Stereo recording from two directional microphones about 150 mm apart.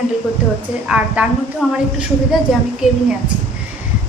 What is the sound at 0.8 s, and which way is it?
Speech, 10° right (ahead or behind).